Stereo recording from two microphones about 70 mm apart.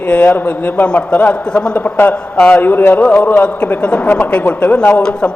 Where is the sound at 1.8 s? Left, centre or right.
Left.